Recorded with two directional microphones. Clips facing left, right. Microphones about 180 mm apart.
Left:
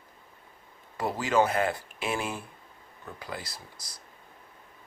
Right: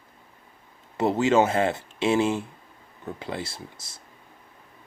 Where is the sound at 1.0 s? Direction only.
25° right (ahead or behind).